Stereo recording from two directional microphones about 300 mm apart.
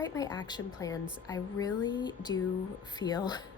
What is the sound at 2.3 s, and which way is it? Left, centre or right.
Speech, left.